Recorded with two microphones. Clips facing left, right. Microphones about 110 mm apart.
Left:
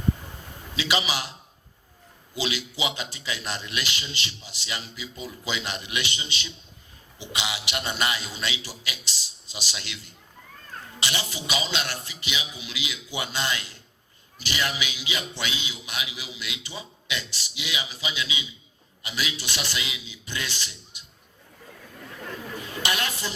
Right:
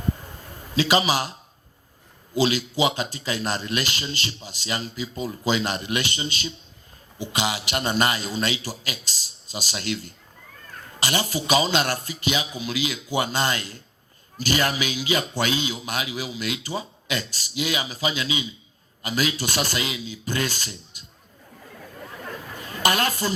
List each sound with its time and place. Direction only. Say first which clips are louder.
0.7 s a man's voice: right 7 dB; 45° right (ahead or behind)
2.3 s a man's voice: right 8 dB; 45° right (ahead or behind)
22.8 s a man's voice: right 7 dB; 45° right (ahead or behind)